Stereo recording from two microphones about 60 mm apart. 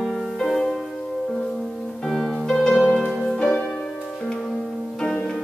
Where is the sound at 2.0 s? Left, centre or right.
Centre.